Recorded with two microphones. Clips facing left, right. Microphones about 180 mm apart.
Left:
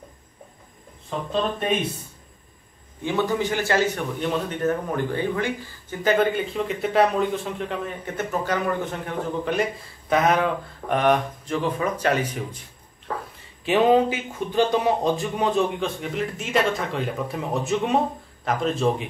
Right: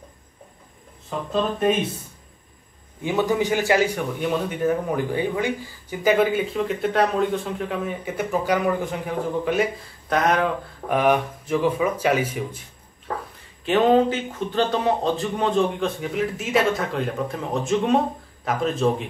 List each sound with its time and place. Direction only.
3.0 s speech: 15° right (ahead or behind)
13.7 s a man's voice: 5° left (ahead or behind)
15.8 s speech: centre (ahead or behind)